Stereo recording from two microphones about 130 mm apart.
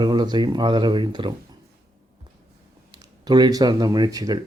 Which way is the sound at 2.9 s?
35° right (ahead or behind).